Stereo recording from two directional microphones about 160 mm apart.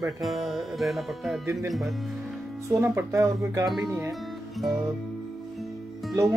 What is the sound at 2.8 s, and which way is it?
Speech, 15° right (ahead or behind).